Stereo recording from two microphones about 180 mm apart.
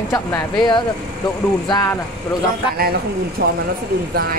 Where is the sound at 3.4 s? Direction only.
70° right (ahead or behind).